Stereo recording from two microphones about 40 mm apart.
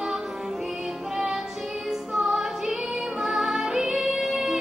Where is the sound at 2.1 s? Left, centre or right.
Centre.